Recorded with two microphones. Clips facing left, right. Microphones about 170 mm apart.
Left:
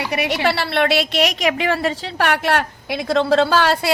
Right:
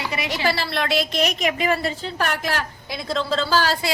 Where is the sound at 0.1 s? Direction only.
65° left (ahead or behind).